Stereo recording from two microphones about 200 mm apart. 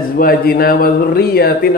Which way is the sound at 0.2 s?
50° left (ahead or behind).